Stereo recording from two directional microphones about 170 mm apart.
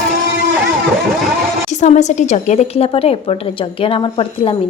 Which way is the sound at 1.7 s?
45° left (ahead or behind).